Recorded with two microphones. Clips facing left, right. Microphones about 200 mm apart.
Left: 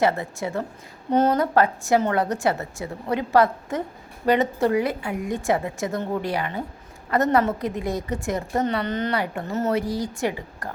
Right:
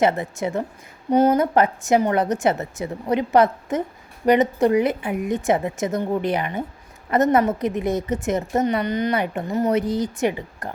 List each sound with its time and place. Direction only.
0.0 s a woman's voice: 20° right (ahead or behind)